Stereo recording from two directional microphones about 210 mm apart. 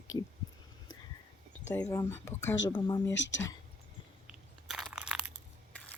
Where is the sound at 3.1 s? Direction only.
60° left (ahead or behind).